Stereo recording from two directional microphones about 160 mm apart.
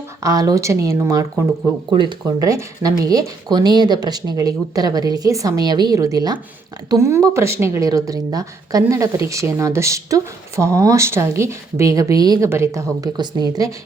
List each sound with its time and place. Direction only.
0.2 s a woman's voice: 20° right (ahead or behind)
2.2 s a woman's voice: 20° right (ahead or behind)